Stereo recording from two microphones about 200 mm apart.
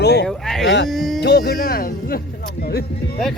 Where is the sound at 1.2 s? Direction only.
55° left (ahead or behind).